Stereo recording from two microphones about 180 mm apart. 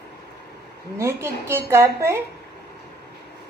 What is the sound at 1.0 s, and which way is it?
Speech, 15° right (ahead or behind).